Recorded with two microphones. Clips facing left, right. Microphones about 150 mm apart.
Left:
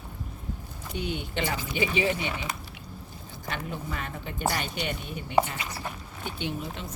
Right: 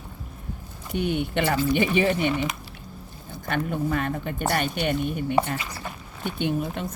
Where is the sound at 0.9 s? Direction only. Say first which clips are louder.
Right 7 dB; 60° right (ahead or behind).